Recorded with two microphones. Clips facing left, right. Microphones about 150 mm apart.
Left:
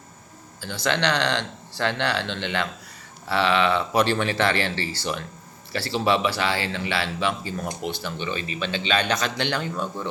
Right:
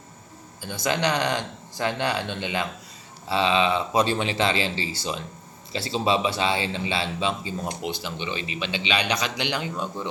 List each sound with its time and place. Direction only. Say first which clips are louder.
0.6 s speech: even; 15° right (ahead or behind)
1.1 s speech: left 1 dB; 75° left (ahead or behind)
1.8 s speech: left 1 dB; 15° right (ahead or behind)
5.7 s speech: left 1 dB; 20° right (ahead or behind)